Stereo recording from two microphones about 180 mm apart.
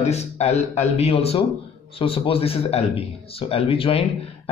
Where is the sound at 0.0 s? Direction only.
40° left (ahead or behind).